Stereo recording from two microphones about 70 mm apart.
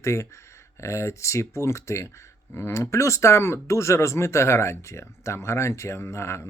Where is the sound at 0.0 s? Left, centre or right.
Left.